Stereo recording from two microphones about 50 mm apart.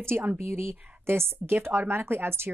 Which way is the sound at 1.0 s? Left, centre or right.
Right.